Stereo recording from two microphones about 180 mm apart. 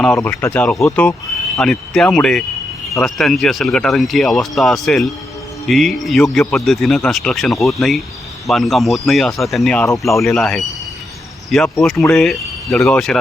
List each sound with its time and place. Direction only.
0.0 s speech: 5° left (ahead or behind)